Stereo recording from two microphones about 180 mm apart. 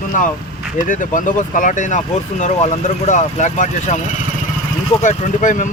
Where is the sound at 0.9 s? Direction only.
45° left (ahead or behind).